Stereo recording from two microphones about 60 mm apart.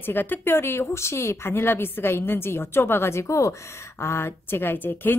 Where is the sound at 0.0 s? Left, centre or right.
Left.